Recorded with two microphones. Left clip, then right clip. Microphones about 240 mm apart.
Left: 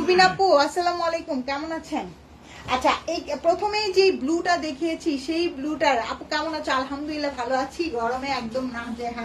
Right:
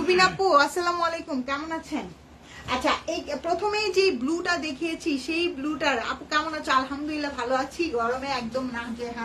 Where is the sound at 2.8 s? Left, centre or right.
Centre.